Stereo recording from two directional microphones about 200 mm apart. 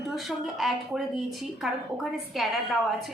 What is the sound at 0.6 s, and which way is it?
Speech, centre (ahead or behind).